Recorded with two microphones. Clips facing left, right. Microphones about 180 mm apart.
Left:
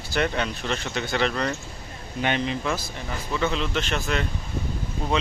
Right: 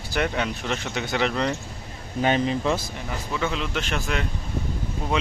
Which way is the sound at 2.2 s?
35° right (ahead or behind).